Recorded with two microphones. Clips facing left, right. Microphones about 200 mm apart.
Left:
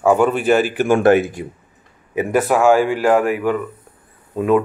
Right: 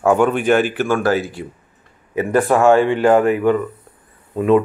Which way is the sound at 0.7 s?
20° left (ahead or behind).